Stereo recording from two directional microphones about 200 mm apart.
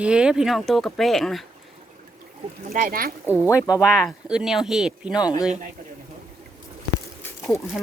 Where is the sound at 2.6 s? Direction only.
45° right (ahead or behind).